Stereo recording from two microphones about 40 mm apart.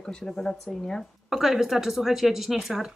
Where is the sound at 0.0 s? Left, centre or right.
Centre.